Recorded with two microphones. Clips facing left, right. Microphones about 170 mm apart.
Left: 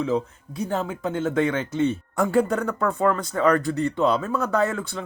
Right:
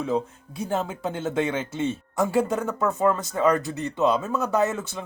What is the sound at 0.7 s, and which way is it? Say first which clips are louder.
Speech: even; 25° right (ahead or behind).